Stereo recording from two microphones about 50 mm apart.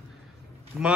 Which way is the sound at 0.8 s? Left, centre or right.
Centre.